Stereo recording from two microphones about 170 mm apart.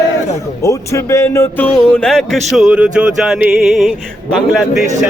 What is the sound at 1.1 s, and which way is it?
Speech, 15° left (ahead or behind).